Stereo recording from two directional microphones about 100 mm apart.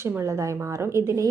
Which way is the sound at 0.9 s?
30° right (ahead or behind).